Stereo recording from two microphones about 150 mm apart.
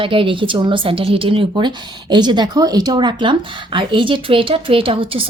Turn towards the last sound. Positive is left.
turn(degrees=-35)  # may be behind; listen again after turning